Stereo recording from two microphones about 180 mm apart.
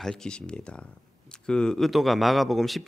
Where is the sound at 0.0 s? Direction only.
5° left (ahead or behind).